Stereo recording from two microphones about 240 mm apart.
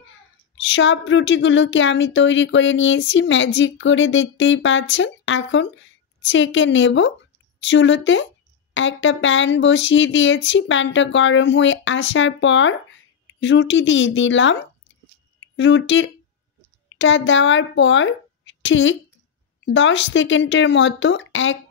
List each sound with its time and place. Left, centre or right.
0.6 s speech: left